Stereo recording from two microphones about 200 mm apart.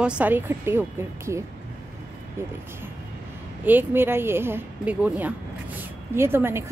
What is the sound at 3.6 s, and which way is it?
Speech, 10° right (ahead or behind).